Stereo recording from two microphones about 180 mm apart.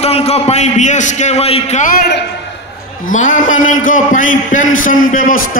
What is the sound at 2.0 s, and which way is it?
Speech, 70° left (ahead or behind).